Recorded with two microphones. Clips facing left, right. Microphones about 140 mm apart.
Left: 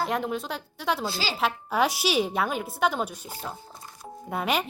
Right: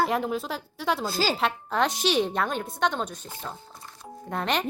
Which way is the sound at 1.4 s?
5° left (ahead or behind).